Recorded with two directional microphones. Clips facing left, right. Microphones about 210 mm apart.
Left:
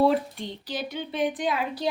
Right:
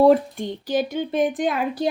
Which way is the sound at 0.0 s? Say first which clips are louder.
Right 7 dB; 50° right (ahead or behind).